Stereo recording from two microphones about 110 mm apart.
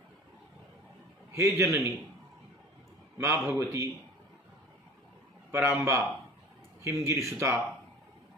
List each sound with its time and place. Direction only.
1.3 s speech: 25° right (ahead or behind)
3.2 s speech: 25° right (ahead or behind)
5.5 s speech: 20° right (ahead or behind)